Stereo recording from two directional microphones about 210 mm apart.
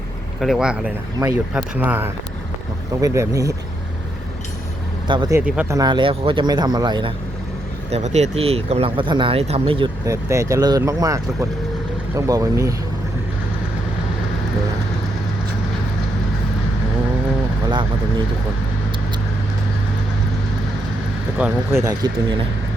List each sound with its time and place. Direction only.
0.3 s speech: centre (ahead or behind); by 3.5 s 15° right (ahead or behind)
5.0 s speech: 20° right (ahead or behind)
5.5 s speech: 10° right (ahead or behind)
7.9 s speech: 30° right (ahead or behind); by 12.7 s 15° right (ahead or behind)
21.3 s speech: 10° right (ahead or behind)